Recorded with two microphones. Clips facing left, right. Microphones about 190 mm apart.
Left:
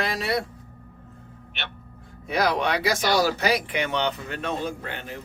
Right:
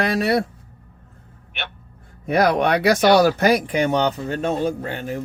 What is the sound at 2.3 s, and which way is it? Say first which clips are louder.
Speech: right 6 dB; 55° right (ahead or behind).